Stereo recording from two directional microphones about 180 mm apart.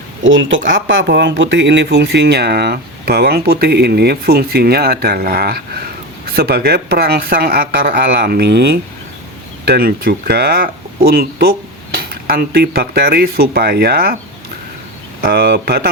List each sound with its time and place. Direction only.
0.2 s speech: 90° right; by 14.2 s 55° right (ahead or behind)
15.2 s speech: 60° right (ahead or behind)